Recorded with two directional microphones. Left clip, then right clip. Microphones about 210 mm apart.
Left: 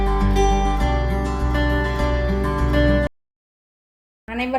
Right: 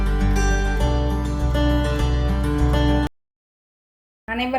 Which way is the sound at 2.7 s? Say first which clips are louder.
Left 4 dB; 5° right (ahead or behind).